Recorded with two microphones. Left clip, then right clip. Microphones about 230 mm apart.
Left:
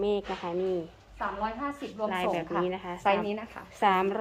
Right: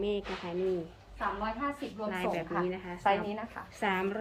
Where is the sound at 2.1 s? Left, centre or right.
Centre.